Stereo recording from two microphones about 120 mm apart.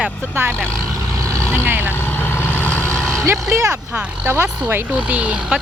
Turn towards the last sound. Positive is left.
turn(degrees=-5)  # may be behind; listen again after turning